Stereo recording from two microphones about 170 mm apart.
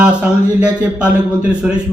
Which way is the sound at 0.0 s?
5° right (ahead or behind).